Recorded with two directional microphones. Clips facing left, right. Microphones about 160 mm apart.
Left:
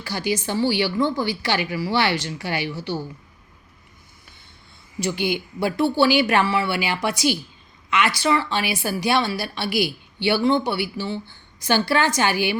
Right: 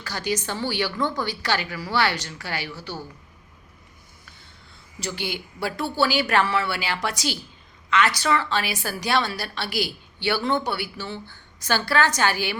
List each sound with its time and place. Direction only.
0.0 s speech: 10° left (ahead or behind)
5.1 s a woman's voice: 15° left (ahead or behind)